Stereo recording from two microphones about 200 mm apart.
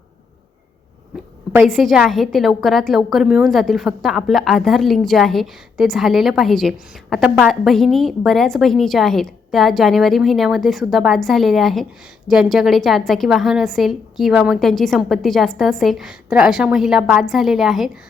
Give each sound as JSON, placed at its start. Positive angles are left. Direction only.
{"t": 1.5, "sound": "a woman's voice", "side_deg": 0}